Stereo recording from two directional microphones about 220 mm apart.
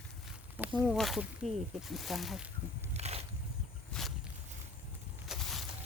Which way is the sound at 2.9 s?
30° right (ahead or behind).